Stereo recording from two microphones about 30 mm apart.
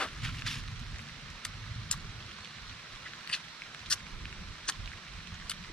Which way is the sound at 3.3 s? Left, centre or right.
Left.